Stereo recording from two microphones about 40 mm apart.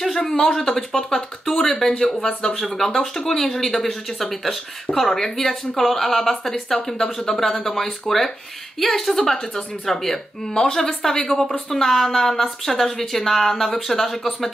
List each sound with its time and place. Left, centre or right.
0.2 s a woman's voice: centre
10.5 s speech: left
10.8 s speech: centre